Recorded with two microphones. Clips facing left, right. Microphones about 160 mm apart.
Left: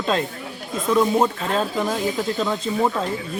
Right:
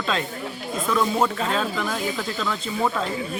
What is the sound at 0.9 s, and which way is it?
Speech, 25° left (ahead or behind).